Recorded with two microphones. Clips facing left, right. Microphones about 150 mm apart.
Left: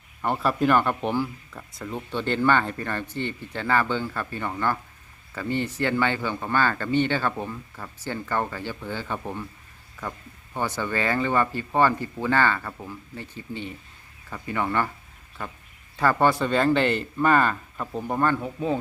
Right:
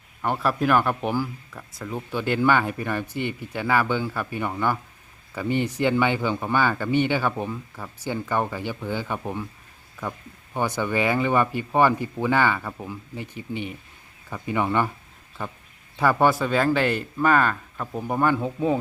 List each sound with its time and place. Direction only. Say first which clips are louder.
0.2 s speech: even; centre (ahead or behind); by 14.9 s 15° right (ahead or behind)
16.0 s speech: right 1 dB; 10° right (ahead or behind)
18.0 s speech: right 2 dB; 10° right (ahead or behind)